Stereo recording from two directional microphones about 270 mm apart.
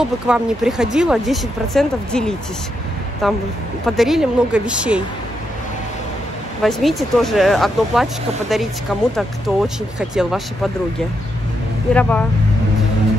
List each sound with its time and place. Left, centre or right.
0.0 s speech: centre
6.6 s speech: centre
11.9 s speech: centre